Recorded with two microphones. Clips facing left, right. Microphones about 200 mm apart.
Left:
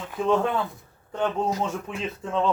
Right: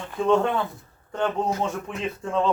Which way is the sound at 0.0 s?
5° left (ahead or behind).